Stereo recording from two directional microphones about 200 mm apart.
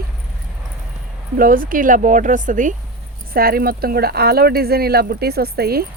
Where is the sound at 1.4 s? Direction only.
45° right (ahead or behind).